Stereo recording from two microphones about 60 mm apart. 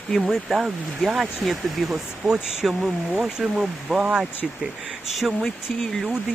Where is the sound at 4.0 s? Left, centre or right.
Centre.